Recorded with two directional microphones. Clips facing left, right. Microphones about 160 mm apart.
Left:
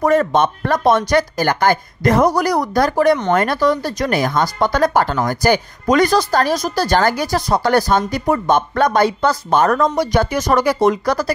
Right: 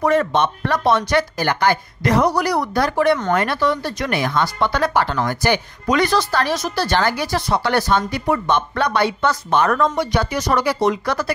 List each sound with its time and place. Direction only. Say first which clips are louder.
0.0 s speech: left 3 dB; 45° left (ahead or behind)